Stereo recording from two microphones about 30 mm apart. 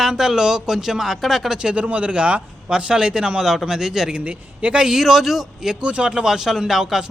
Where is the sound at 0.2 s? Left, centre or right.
Centre.